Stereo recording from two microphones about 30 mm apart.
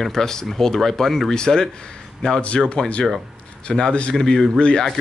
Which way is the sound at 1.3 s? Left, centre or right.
Left.